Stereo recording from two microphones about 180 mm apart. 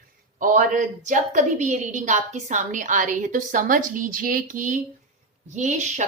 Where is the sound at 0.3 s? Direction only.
45° right (ahead or behind).